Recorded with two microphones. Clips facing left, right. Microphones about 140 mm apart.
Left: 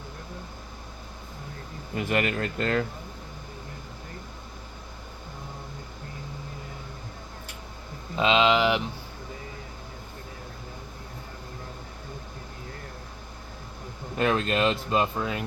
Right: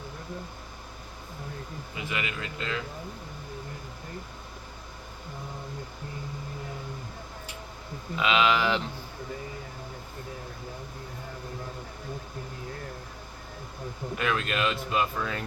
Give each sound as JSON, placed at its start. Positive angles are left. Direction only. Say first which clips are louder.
{"t": 2.0, "sound": "speech", "louder": "left 8 dB", "side_deg": 50}
{"t": 8.2, "sound": "speech", "louder": "left 3 dB", "side_deg": 25}
{"t": 14.2, "sound": "speech", "louder": "left 5 dB", "side_deg": 35}